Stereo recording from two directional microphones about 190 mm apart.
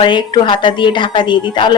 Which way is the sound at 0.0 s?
25° left (ahead or behind).